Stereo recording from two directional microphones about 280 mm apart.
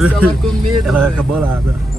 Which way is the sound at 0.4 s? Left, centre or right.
Centre.